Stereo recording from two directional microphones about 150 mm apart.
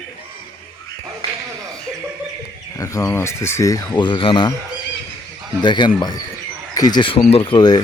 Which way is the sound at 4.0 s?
35° left (ahead or behind).